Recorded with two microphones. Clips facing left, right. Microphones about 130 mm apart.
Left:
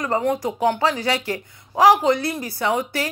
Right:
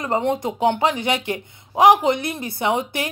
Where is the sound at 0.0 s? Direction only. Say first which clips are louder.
Even; 25° right (ahead or behind).